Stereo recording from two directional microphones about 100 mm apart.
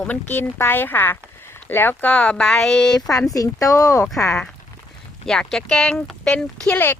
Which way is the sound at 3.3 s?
35° left (ahead or behind).